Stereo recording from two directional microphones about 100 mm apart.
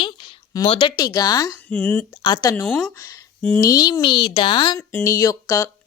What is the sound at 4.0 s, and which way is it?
Speech, 55° left (ahead or behind).